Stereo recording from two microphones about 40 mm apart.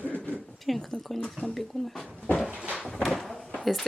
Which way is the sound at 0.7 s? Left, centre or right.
Centre.